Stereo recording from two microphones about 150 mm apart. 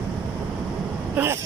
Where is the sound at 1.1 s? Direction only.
15° right (ahead or behind).